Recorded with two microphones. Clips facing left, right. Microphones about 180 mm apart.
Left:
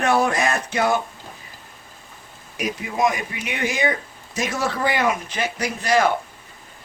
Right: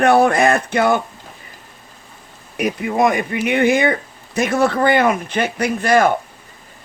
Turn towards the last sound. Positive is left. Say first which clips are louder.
# right 5 dB
turn(degrees=-55)  # may be behind; listen again after turning